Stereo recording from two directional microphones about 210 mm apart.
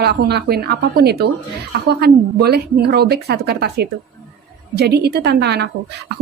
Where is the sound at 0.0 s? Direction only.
50° right (ahead or behind).